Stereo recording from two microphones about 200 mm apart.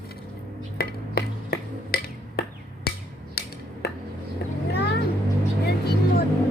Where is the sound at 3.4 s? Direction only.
50° left (ahead or behind).